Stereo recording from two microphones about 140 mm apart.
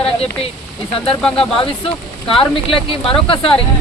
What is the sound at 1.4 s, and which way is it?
Speech, 40° left (ahead or behind).